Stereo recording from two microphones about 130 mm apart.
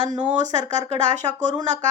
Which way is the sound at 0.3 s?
65° right (ahead or behind).